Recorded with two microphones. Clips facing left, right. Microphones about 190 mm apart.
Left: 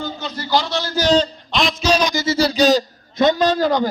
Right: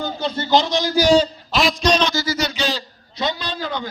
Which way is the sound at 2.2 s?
30° left (ahead or behind).